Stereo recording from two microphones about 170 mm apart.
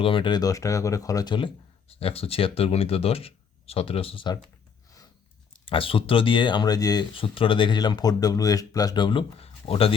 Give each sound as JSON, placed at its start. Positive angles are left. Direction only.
{"t": 0.0, "sound": "speech", "side_deg": 30}
{"t": 5.6, "sound": "speech", "side_deg": 30}